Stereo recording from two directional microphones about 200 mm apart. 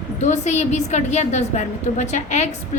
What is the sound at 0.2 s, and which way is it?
A woman's voice, 35° left (ahead or behind).